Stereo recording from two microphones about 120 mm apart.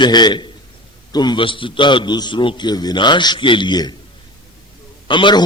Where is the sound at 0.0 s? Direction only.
40° left (ahead or behind).